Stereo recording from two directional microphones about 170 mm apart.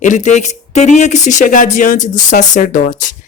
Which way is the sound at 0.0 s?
45° left (ahead or behind).